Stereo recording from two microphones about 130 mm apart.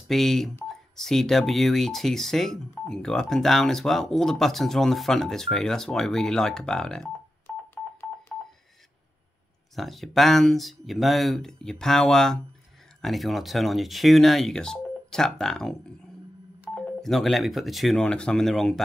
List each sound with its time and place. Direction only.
0.1 s speech: centre (ahead or behind)
7.7 s telephone dialing: 20° left (ahead or behind)
9.8 s speech: centre (ahead or behind)